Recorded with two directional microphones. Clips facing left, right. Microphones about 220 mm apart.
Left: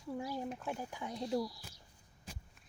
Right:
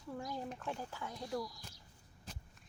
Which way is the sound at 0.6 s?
15° left (ahead or behind).